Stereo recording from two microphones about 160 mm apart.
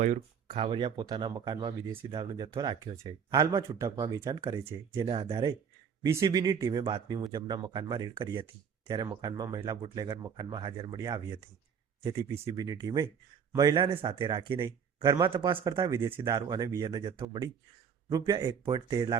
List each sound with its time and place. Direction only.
0.0 s speech: 45° right (ahead or behind)
0.7 s speech: 25° right (ahead or behind)
16.2 s speech: 25° right (ahead or behind)